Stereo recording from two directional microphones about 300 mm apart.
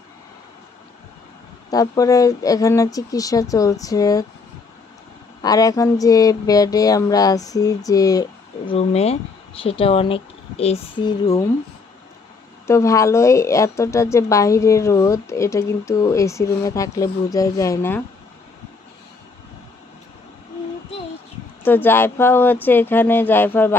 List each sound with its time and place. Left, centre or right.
1.7 s speech: centre
5.4 s speech: centre
12.6 s speech: centre
21.6 s speech: centre